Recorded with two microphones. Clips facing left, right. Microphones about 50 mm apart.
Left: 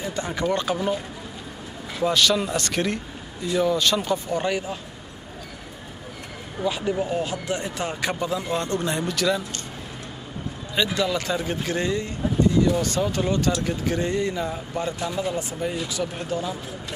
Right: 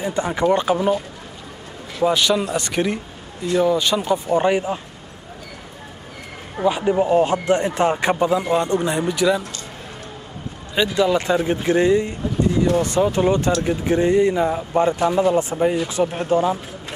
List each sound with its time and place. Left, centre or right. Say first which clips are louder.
0.0 s speech: right 6 dB; centre
2.0 s speech: right 3 dB; centre
4.3 s speech: right 7 dB; right
6.6 s speech: right 7 dB; right
7.2 s speech: right 10 dB; right; by 9.4 s centre
11.0 s speech: right 7 dB; right